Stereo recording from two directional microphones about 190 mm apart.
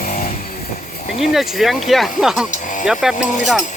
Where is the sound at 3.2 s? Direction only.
40° left (ahead or behind).